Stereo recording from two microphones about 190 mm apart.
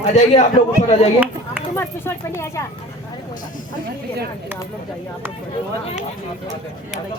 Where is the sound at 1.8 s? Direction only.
10° left (ahead or behind).